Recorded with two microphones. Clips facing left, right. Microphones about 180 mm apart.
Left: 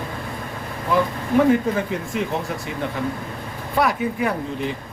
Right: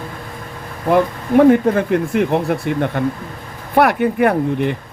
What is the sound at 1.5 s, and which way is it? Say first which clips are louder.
Speech: right 6 dB; 60° right (ahead or behind).